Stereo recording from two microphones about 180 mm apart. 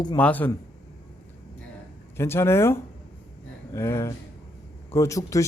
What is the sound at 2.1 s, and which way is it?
A man's voice, 15° left (ahead or behind).